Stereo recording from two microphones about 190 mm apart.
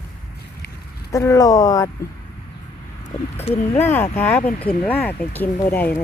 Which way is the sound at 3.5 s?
10° left (ahead or behind).